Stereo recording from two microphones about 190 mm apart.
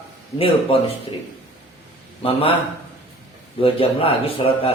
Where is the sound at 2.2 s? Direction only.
30° left (ahead or behind).